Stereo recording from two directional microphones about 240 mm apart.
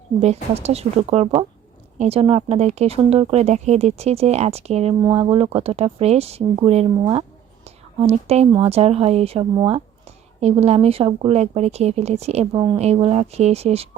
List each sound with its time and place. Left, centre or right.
0.5 s speech: right